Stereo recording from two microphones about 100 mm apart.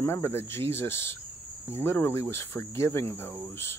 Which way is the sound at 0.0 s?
25° left (ahead or behind).